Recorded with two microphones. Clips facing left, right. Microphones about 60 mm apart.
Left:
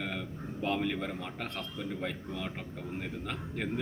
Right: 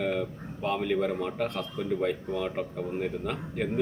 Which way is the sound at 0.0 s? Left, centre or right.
Centre.